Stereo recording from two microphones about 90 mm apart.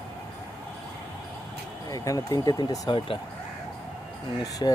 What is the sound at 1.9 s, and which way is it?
Speech, 40° left (ahead or behind).